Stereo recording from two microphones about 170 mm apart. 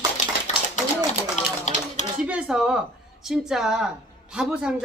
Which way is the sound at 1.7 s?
45° left (ahead or behind).